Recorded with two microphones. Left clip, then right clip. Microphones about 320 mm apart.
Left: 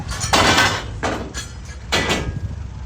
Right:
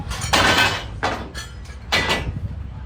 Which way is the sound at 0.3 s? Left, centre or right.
Centre.